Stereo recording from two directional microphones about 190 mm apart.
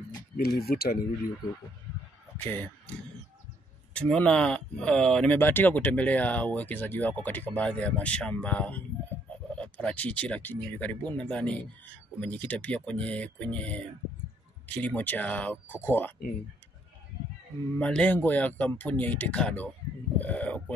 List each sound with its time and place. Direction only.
0.4 s speech: 55° left (ahead or behind)
2.3 s speech: 10° left (ahead or behind)
3.9 s speech: 5° left (ahead or behind)
17.7 s speech: 5° left (ahead or behind)
20.2 s a sound: 10° left (ahead or behind)